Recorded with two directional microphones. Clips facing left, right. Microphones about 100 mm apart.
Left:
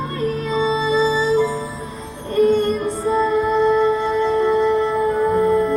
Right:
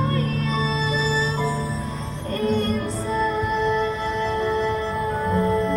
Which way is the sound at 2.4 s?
20° left (ahead or behind).